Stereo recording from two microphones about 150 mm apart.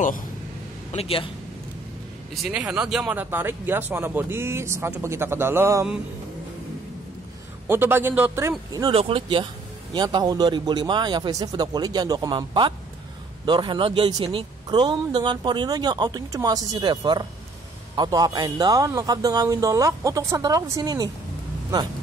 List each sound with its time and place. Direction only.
0.9 s a man's voice: 40° left (ahead or behind)
2.4 s speech: 5° right (ahead or behind)
7.6 s speech: 15° right (ahead or behind)
8.8 s a man's voice: 35° right (ahead or behind)